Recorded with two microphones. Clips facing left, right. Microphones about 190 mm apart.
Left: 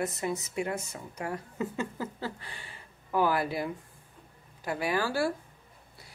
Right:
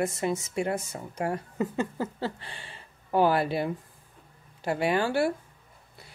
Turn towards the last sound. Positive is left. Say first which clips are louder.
# right 4 dB
turn(degrees=-25)  # may be behind; listen again after turning